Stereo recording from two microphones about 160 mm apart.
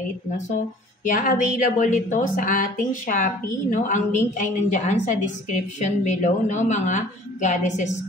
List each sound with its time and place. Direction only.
1.0 s a woman's voice: 55° left (ahead or behind)